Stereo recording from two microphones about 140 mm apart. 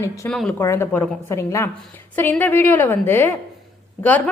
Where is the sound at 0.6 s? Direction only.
20° left (ahead or behind).